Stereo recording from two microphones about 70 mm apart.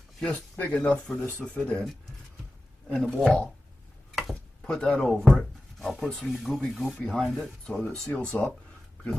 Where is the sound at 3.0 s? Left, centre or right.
Centre.